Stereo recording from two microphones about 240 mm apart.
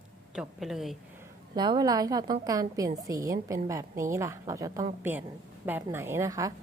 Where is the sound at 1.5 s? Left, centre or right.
Centre.